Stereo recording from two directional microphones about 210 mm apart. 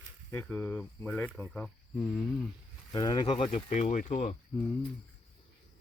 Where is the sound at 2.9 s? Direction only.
20° left (ahead or behind).